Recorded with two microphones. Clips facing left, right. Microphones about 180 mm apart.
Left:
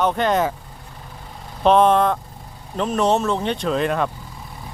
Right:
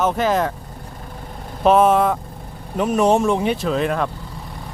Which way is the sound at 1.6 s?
5° right (ahead or behind).